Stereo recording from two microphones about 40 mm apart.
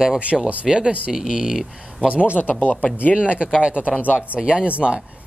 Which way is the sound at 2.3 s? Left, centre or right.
Left.